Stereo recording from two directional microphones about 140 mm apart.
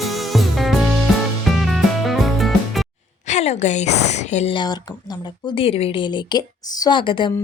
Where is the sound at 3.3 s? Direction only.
50° left (ahead or behind).